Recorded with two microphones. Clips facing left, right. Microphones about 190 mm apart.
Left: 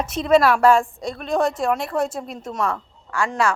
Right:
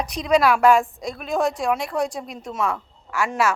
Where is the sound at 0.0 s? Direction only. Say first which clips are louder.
Left 2 dB; centre (ahead or behind).